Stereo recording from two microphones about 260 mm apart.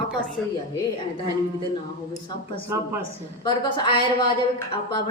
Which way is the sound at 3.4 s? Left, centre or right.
Centre.